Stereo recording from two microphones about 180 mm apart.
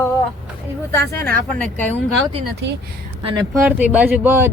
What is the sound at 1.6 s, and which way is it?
Speech, 10° left (ahead or behind).